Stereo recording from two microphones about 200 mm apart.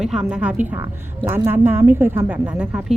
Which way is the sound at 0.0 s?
5° right (ahead or behind).